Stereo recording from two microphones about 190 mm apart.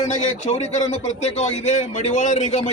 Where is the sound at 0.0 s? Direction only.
35° left (ahead or behind).